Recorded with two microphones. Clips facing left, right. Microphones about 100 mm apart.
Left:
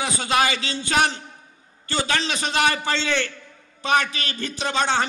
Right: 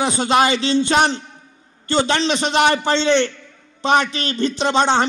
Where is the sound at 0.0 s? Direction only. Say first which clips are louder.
Right 6 dB; 25° right (ahead or behind).